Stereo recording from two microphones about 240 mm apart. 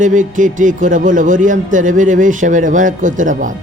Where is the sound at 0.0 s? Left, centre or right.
Right.